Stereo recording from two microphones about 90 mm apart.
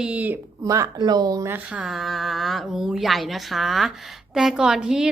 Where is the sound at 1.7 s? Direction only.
5° right (ahead or behind).